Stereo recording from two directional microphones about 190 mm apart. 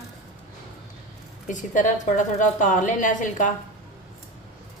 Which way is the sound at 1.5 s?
40° left (ahead or behind).